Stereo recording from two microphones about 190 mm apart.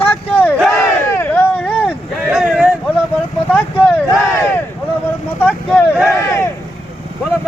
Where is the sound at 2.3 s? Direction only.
5° right (ahead or behind).